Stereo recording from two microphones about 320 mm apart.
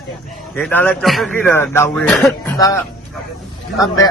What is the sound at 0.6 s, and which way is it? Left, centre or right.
Speech, centre.